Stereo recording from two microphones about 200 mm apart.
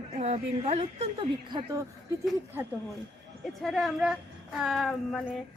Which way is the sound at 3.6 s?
Centre (ahead or behind).